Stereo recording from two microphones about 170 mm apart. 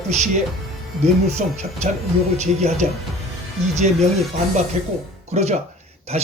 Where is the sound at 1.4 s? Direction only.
50° right (ahead or behind).